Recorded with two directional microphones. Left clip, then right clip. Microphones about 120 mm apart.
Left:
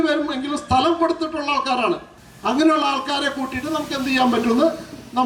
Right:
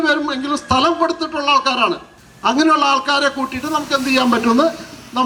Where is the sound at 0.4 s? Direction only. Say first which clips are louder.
Right 3 dB; 20° right (ahead or behind).